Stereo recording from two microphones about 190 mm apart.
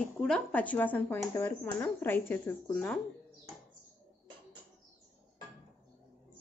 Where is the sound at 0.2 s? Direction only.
5° left (ahead or behind).